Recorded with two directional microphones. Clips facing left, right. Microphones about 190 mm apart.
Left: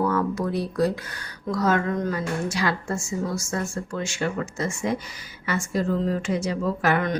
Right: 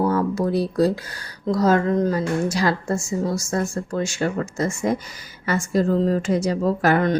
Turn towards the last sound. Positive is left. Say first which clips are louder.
# right 5 dB
turn(degrees=-35)  # may be behind; listen again after turning